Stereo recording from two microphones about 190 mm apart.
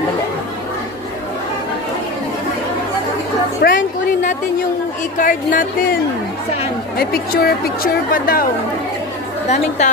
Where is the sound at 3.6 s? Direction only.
45° left (ahead or behind).